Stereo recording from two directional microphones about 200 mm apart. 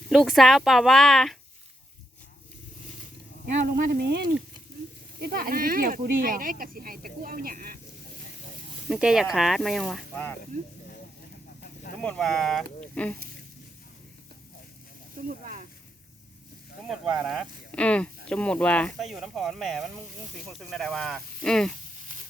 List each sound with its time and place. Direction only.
0.1 s speech: centre (ahead or behind)
3.4 s speech: 45° right (ahead or behind)
5.2 s speech: 50° right (ahead or behind)
8.9 s speech: 5° right (ahead or behind)
12.0 s speech: 5° left (ahead or behind)
15.3 s speech: 45° right (ahead or behind)
16.8 s speech: centre (ahead or behind)